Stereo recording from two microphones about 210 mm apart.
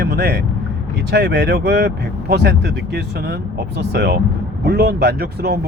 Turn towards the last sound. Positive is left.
turn(degrees=-50)  # may be behind; listen again after turning